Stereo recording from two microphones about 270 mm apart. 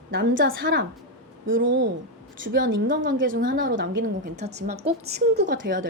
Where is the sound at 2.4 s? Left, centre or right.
Right.